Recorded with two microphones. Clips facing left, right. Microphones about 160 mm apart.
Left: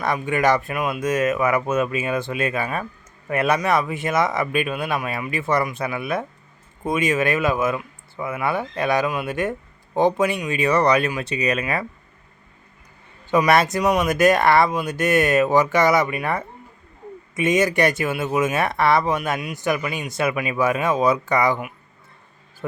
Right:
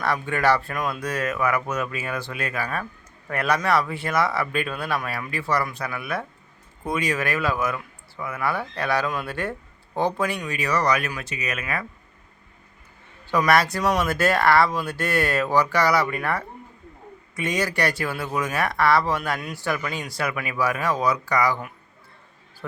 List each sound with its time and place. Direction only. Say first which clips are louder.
0.0 s speech: left 2 dB; 15° left (ahead or behind)
13.3 s speech: left 3 dB; 20° left (ahead or behind)